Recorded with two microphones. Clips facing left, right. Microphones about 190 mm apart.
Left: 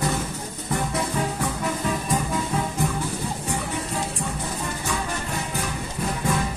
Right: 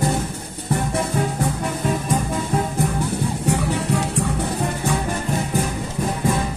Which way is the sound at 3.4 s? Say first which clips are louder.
Right 7 dB; 70° right (ahead or behind).